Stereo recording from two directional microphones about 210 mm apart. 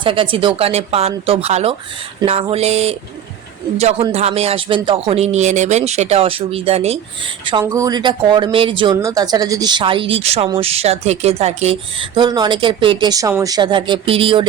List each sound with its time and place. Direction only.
0.0 s speech: 25° right (ahead or behind)
7.6 s speech: 15° right (ahead or behind)